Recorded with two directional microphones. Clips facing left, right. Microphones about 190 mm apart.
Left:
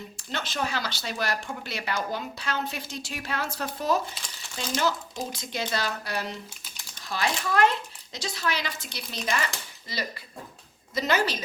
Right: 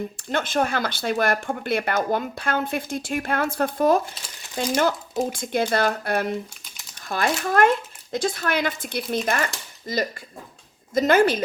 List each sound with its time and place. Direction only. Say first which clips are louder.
0.3 s speech: right 7 dB; 50° right (ahead or behind)